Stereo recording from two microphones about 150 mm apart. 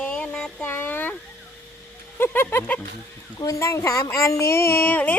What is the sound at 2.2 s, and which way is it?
Speech, 15° left (ahead or behind).